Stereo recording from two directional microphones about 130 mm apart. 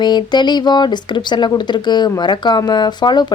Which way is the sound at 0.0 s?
35° left (ahead or behind).